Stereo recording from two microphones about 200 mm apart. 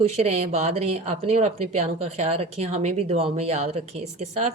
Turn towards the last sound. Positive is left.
turn(degrees=-30)  # may be behind; listen again after turning